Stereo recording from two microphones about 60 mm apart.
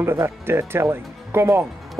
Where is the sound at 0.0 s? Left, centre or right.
Right.